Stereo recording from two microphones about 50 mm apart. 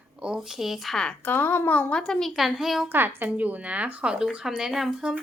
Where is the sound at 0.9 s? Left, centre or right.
Centre.